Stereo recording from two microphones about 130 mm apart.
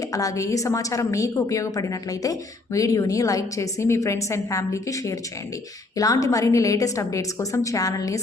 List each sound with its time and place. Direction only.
0.1 s a woman's voice: 25° left (ahead or behind)